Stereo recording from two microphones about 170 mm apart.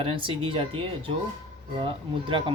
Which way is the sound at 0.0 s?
30° right (ahead or behind).